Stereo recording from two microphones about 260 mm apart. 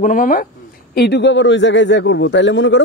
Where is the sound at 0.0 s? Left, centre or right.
Left.